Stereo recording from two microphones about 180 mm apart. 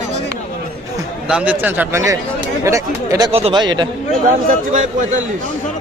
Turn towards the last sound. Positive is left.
turn(degrees=-40)  # may be behind; listen again after turning